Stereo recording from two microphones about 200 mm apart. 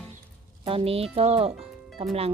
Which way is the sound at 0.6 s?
30° right (ahead or behind).